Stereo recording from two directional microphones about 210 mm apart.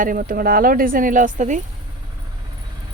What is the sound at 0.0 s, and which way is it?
Speech, 40° right (ahead or behind).